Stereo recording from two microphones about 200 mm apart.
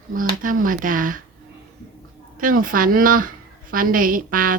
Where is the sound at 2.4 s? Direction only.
45° right (ahead or behind).